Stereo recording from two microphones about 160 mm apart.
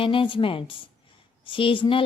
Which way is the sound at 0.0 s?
35° left (ahead or behind).